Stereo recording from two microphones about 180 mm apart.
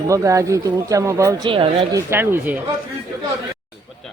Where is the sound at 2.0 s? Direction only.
15° right (ahead or behind).